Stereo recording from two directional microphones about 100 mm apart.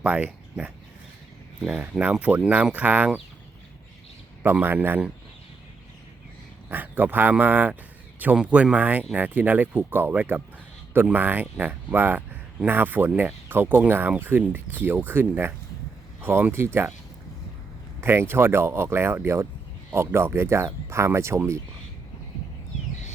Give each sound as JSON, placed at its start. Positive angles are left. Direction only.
{"t": 0.0, "sound": "speech", "side_deg": -10}
{"t": 4.4, "sound": "speech", "side_deg": -20}
{"t": 6.7, "sound": "speech", "side_deg": -20}
{"t": 18.0, "sound": "speech", "side_deg": -25}